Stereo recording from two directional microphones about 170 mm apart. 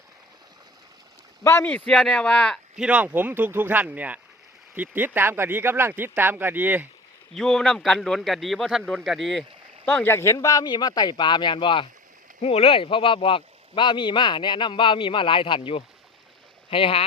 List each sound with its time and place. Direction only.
1.5 s a man's voice: 15° left (ahead or behind)
2.8 s speech: 10° right (ahead or behind)
7.3 s a man's voice: 5° left (ahead or behind); by 17.1 s 35° left (ahead or behind)